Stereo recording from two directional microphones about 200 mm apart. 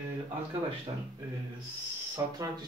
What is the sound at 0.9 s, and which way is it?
Speech, 25° right (ahead or behind).